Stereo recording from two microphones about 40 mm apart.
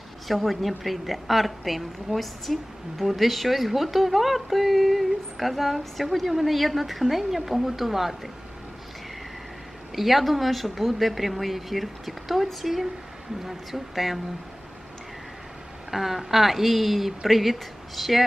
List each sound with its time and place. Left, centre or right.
0.3 s speech: centre
9.9 s speech: centre
15.9 s speech: centre